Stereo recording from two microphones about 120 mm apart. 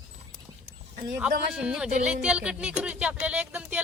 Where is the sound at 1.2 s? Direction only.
5° right (ahead or behind).